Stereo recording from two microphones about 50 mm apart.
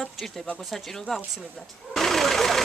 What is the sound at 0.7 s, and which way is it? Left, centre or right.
Speech, centre.